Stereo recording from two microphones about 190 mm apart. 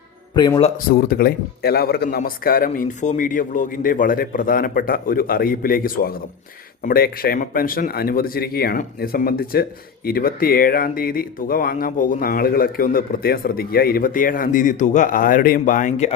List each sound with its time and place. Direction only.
0.3 s speech: 20° left (ahead or behind)
0.9 s speech: 50° left (ahead or behind)